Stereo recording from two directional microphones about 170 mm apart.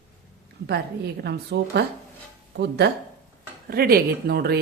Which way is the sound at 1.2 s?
70° right (ahead or behind).